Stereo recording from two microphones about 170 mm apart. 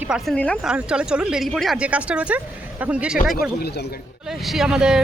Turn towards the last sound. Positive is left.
turn(degrees=-5)  # may be behind; listen again after turning